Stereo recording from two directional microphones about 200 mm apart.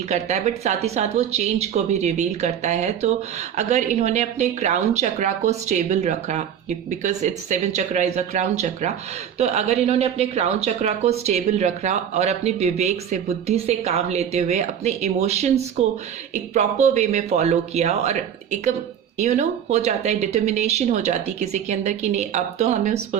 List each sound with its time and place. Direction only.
0.1 s a woman's voice: 35° right (ahead or behind)